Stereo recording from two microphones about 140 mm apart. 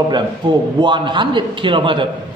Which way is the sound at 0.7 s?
35° right (ahead or behind).